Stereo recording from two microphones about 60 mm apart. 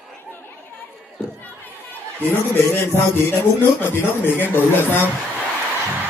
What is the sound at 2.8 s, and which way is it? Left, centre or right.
Speech, left.